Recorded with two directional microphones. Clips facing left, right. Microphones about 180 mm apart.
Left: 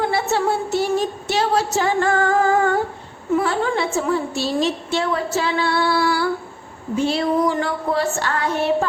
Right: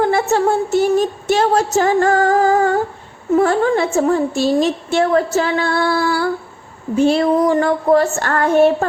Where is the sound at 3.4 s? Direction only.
45° right (ahead or behind).